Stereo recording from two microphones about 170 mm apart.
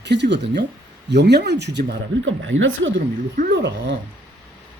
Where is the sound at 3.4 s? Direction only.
80° right.